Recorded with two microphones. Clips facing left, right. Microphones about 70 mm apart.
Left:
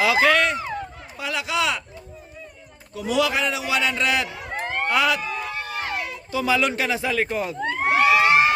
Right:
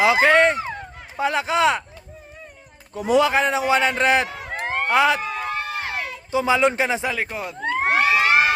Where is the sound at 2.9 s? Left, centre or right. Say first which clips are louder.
Right 4 dB; right.